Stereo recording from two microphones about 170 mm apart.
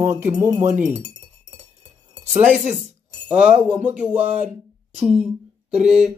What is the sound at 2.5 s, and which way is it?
Speech, centre (ahead or behind).